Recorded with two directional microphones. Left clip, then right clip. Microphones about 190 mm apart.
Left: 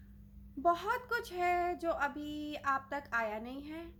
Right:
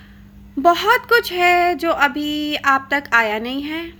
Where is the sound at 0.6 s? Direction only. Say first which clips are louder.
Right 18 dB; 20° right (ahead or behind).